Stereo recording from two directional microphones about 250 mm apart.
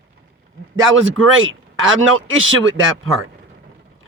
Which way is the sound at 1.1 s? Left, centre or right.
Right.